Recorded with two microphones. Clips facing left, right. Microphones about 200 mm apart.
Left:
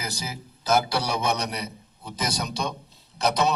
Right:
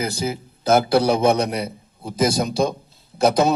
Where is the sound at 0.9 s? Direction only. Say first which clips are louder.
Right 10 dB; 55° right (ahead or behind).